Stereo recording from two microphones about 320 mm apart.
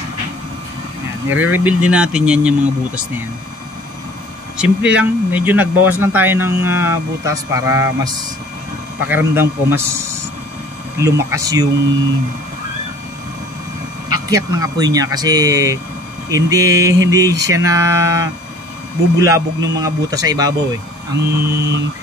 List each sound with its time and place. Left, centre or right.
1.3 s speech: centre
4.6 s speech: centre
14.3 s speech: centre